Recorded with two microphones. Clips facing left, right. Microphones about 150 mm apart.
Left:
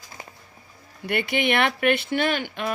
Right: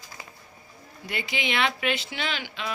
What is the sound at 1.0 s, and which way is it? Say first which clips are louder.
Speech: left 8 dB; 60° left (ahead or behind).